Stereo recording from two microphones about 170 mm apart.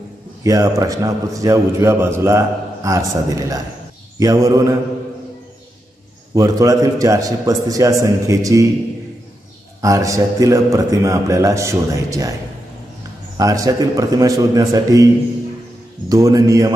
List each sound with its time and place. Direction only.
0.4 s a man's voice: 20° right (ahead or behind)
6.3 s a man's voice: 20° right (ahead or behind)
9.8 s a man's voice: 20° right (ahead or behind)
13.4 s a man's voice: 20° right (ahead or behind)
16.1 s a man's voice: 20° right (ahead or behind)